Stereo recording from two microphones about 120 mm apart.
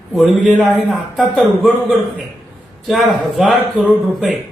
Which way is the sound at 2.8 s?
Centre (ahead or behind).